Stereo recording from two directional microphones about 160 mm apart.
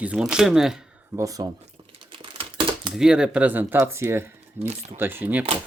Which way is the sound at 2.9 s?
5° right (ahead or behind).